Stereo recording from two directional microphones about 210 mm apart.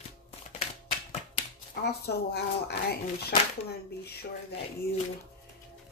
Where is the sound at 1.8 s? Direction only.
50° left (ahead or behind).